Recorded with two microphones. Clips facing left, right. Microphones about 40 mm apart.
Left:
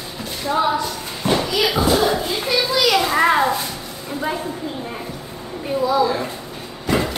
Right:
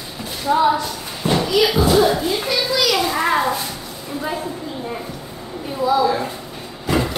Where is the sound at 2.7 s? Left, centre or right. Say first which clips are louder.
Even; left.